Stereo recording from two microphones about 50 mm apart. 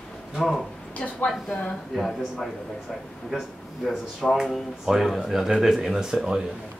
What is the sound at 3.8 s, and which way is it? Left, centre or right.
Speech, centre.